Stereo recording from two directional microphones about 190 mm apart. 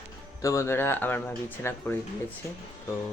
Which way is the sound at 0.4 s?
15° left (ahead or behind).